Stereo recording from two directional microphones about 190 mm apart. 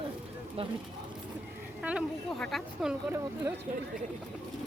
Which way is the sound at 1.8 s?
5° right (ahead or behind).